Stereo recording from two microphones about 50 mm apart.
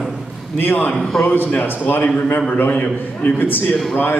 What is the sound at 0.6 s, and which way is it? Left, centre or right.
A man's voice, left.